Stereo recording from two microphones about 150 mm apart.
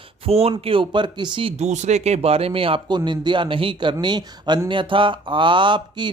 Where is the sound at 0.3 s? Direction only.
40° right (ahead or behind).